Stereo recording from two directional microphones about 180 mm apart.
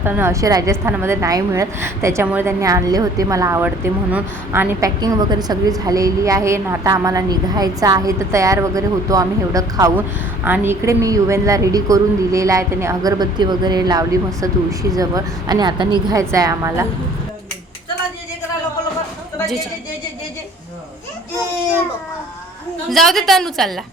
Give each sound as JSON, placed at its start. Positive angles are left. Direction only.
{"t": 0.0, "sound": "a woman's voice", "side_deg": -10}
{"t": 22.9, "sound": "a woman's voice", "side_deg": 0}